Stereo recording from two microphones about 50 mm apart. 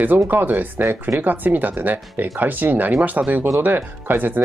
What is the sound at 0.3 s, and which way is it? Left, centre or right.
Speech, right.